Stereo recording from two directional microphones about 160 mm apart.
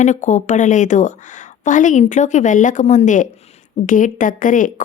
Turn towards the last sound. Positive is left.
turn(degrees=55)  # may be behind; listen again after turning